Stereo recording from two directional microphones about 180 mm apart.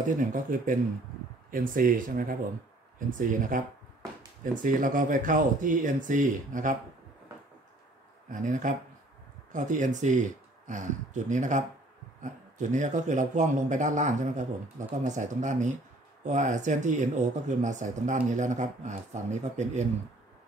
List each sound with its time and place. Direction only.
0.1 s speech: 45° right (ahead or behind)
4.6 s speech: 45° right (ahead or behind)
8.3 s speech: 45° right (ahead or behind)